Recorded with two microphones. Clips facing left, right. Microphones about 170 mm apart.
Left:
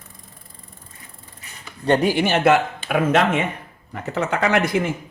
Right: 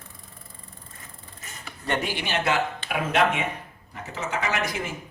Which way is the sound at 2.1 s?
50° left (ahead or behind).